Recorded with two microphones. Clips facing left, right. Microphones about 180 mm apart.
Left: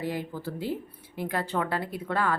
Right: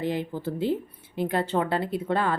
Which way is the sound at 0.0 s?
20° right (ahead or behind).